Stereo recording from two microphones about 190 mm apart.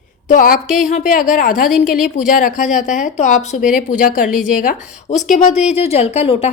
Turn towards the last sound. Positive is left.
turn(degrees=35)  # may be behind; listen again after turning